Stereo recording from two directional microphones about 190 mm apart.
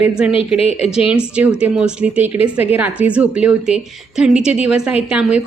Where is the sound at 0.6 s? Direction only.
35° left (ahead or behind).